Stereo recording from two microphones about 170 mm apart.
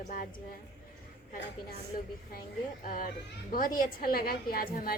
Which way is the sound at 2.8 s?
55° left (ahead or behind).